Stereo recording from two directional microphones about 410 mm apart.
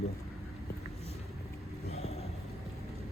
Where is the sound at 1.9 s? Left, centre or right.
Centre.